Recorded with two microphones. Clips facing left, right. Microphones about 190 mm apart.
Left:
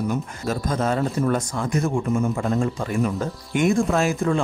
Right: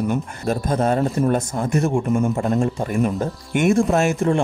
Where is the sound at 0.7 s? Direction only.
30° right (ahead or behind).